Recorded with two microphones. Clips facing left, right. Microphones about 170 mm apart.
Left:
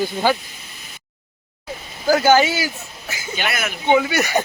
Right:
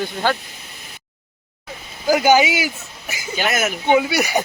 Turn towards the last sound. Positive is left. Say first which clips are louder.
# even
turn(degrees=-10)  # may be behind; listen again after turning